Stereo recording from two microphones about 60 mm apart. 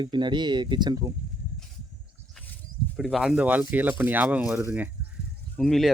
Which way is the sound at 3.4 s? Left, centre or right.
Right.